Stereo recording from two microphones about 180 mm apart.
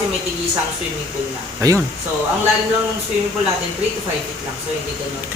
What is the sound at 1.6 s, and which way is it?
Speech, 15° right (ahead or behind).